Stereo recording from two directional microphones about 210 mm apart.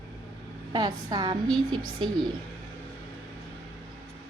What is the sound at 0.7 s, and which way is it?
Speech, 20° right (ahead or behind).